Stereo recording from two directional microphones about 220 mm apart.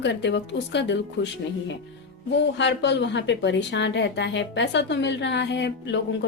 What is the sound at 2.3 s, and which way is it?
A woman's voice, 50° left (ahead or behind).